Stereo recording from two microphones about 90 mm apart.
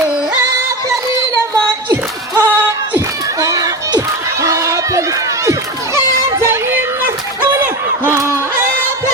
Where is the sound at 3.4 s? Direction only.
40° right (ahead or behind).